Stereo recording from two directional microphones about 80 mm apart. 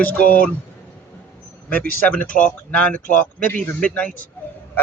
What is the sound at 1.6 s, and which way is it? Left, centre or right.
A man's voice, centre.